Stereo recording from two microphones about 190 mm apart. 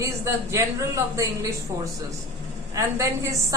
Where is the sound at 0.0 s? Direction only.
15° right (ahead or behind).